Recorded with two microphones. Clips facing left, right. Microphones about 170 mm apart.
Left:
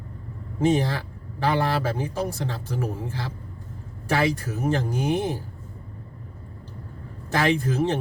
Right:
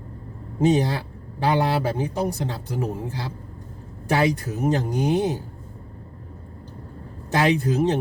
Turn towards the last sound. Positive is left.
turn(degrees=-15)  # may be behind; listen again after turning